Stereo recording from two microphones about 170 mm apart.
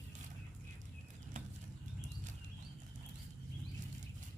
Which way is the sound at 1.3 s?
45° right (ahead or behind).